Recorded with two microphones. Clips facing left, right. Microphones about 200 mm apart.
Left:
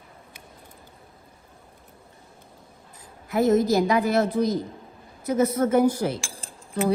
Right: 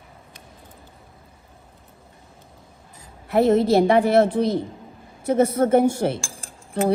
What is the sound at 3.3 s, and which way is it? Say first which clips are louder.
Speech: right 3 dB; 60° right (ahead or behind).